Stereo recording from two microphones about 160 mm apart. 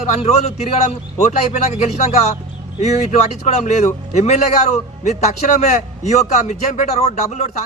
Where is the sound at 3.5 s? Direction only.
45° left (ahead or behind).